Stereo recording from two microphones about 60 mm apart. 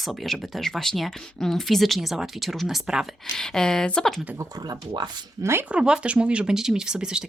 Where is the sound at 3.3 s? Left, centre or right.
Centre.